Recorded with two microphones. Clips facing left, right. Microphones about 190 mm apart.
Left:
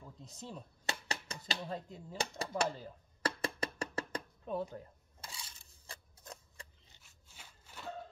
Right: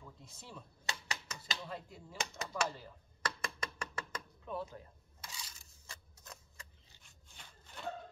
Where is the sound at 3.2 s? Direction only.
30° left (ahead or behind).